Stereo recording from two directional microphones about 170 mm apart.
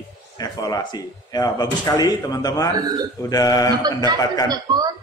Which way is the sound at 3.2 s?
20° left (ahead or behind).